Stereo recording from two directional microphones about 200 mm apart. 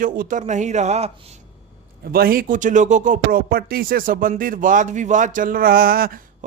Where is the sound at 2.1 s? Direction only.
45° right (ahead or behind).